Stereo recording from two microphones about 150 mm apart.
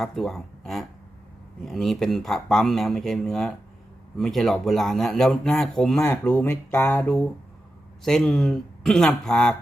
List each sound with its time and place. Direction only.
0.0 s speech: centre (ahead or behind)
6.0 s speech: 25° left (ahead or behind)
6.7 s speech: 10° left (ahead or behind)
8.0 s speech: centre (ahead or behind)